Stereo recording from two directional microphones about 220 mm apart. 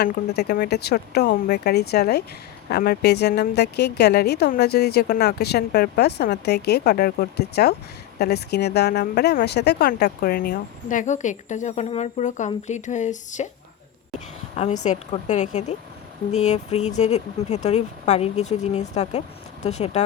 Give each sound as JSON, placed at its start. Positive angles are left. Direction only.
{"t": 0.0, "sound": "speech", "side_deg": 45}
{"t": 14.5, "sound": "speech", "side_deg": 30}